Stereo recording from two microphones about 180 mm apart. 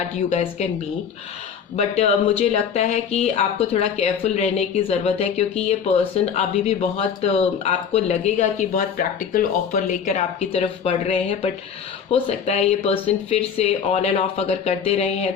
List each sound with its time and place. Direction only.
0.2 s speech: 40° left (ahead or behind)
1.7 s speech: 35° left (ahead or behind)